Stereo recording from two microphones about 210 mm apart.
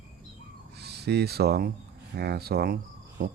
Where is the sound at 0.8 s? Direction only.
50° right (ahead or behind).